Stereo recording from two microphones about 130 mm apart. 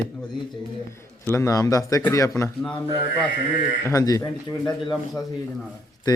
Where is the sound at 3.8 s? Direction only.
25° left (ahead or behind).